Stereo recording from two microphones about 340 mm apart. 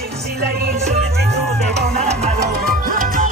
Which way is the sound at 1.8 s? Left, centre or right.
Centre.